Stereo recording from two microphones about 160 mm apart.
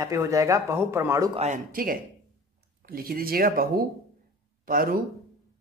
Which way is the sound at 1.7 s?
60° right (ahead or behind).